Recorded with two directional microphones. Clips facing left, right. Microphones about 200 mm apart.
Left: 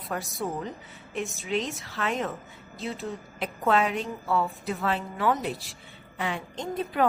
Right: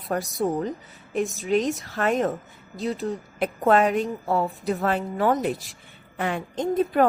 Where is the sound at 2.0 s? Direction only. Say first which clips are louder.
Right 6 dB; 50° right (ahead or behind).